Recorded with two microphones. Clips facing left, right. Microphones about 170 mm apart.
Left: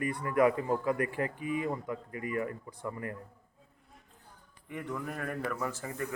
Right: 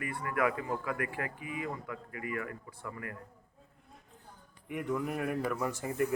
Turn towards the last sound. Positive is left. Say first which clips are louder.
# right 4 dB
turn(degrees=-15)  # may be behind; listen again after turning